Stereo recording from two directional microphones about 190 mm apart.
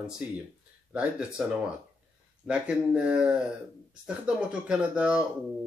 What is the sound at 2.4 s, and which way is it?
Speech, 5° right (ahead or behind).